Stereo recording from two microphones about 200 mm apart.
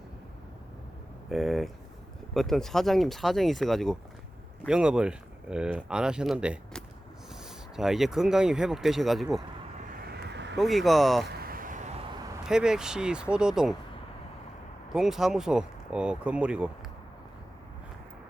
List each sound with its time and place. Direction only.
1.3 s speech: centre (ahead or behind)
9.9 s vehicle: 50° right (ahead or behind)
10.6 s speech: centre (ahead or behind)
11.3 s a sound: 50° right (ahead or behind)
12.4 s speech: 5° right (ahead or behind)
14.9 s speech: centre (ahead or behind)